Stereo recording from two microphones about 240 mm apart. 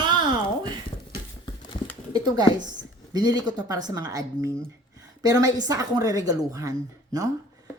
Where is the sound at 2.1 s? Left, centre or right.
Centre.